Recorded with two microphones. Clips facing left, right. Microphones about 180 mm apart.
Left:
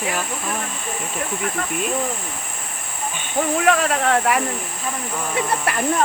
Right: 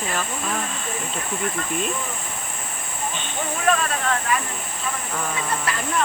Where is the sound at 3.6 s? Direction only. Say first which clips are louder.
Left 2 dB; 85° left.